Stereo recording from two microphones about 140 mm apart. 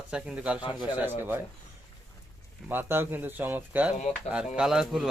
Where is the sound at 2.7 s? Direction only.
15° right (ahead or behind).